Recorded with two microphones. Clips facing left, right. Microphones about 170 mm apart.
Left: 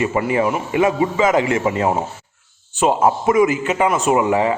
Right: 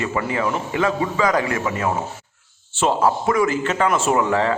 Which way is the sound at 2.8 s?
20° left (ahead or behind).